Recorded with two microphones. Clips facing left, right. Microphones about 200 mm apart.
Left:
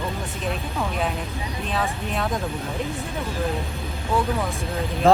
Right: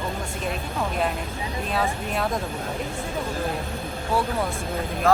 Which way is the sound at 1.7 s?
Centre (ahead or behind).